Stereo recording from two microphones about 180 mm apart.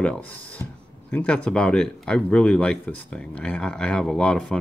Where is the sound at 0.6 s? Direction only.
15° left (ahead or behind).